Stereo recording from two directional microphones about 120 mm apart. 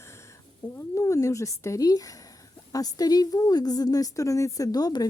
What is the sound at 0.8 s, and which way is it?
A woman's voice, 25° left (ahead or behind).